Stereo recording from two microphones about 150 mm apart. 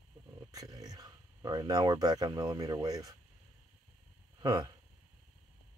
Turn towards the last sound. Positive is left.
turn(degrees=-25)  # may be behind; listen again after turning